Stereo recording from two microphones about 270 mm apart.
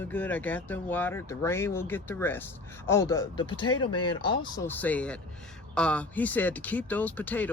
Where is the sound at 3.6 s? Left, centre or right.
Left.